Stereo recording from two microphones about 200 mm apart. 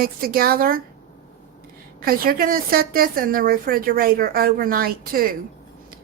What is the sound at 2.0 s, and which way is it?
A woman's voice, 45° right (ahead or behind).